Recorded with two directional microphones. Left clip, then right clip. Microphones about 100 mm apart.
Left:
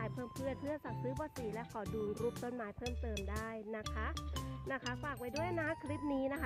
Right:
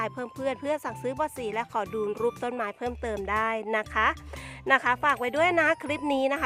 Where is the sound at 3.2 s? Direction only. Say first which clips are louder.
Right 17 dB; 60° right (ahead or behind).